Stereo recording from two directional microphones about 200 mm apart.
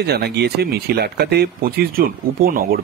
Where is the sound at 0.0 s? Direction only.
55° right (ahead or behind).